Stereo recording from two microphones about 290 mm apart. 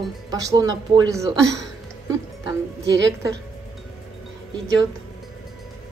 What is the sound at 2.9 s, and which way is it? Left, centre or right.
Speech, right.